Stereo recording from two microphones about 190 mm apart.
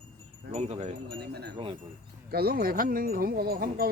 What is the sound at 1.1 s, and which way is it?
Speech, 55° right (ahead or behind).